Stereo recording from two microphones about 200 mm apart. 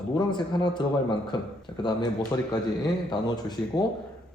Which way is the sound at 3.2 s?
20° left (ahead or behind).